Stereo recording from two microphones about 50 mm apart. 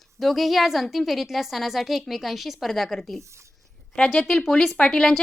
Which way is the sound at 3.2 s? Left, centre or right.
Right.